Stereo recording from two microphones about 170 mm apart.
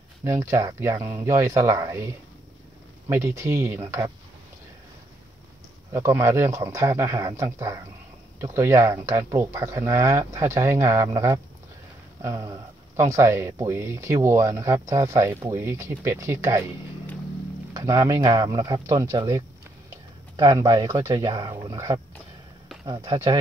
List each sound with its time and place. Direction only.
0.2 s speech: 15° right (ahead or behind)
3.1 s speech: 15° right (ahead or behind)
5.9 s speech: 15° right (ahead or behind)
17.7 s speech: 20° right (ahead or behind)